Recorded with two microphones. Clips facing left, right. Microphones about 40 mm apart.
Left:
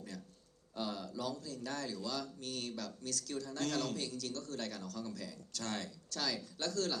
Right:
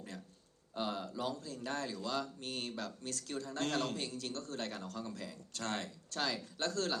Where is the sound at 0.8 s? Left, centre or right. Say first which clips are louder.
Right 2 dB; right.